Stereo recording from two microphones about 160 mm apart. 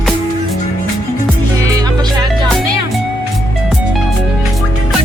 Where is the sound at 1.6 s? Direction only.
20° right (ahead or behind).